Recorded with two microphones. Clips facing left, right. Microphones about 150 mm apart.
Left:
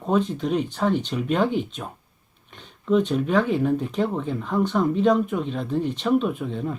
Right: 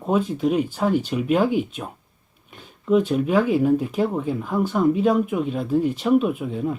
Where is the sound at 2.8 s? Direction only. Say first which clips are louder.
Right 2 dB; 5° right (ahead or behind).